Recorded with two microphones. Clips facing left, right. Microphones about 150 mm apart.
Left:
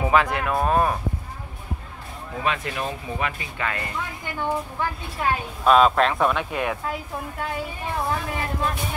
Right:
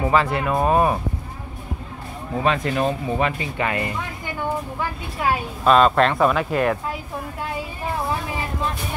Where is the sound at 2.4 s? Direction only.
35° right (ahead or behind).